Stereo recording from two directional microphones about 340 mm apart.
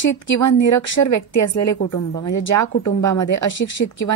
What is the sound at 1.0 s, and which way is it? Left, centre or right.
Speech, left.